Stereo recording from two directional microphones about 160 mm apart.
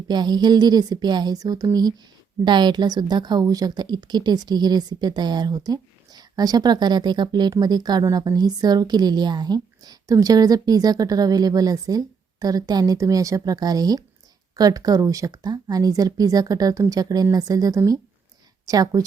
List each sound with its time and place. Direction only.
0.1 s a woman's voice: 25° right (ahead or behind)